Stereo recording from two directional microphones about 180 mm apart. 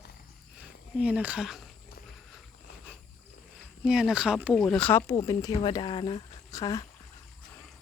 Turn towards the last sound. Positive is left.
turn(degrees=20)  # may be behind; listen again after turning